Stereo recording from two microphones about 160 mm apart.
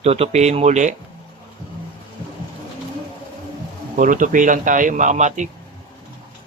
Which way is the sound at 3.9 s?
55° right (ahead or behind).